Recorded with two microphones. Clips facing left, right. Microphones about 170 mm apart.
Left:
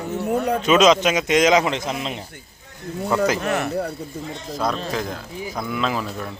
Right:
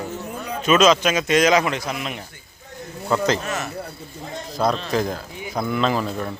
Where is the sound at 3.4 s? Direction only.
60° left (ahead or behind).